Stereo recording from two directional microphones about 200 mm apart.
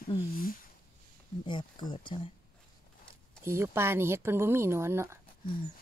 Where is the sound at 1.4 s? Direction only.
20° left (ahead or behind).